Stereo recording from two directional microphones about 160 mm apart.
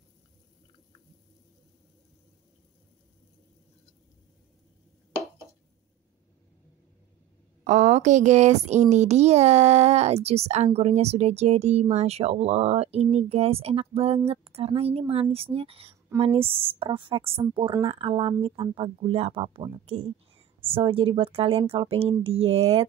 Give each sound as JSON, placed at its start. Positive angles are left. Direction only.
{"t": 7.6, "sound": "speech", "side_deg": -45}